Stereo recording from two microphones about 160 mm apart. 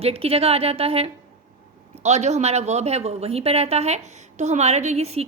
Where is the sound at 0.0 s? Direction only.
40° right (ahead or behind).